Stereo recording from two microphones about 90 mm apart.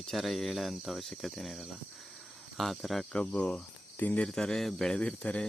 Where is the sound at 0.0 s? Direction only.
5° left (ahead or behind).